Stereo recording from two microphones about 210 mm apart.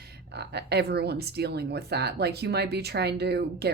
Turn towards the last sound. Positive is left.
turn(degrees=-50)  # may be behind; listen again after turning